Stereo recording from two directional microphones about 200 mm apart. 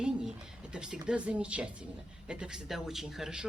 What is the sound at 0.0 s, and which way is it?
Speech, 5° right (ahead or behind).